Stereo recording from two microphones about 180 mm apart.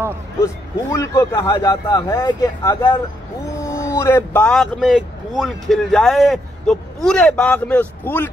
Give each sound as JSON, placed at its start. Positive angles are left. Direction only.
{"t": 0.9, "sound": "speech", "side_deg": 15}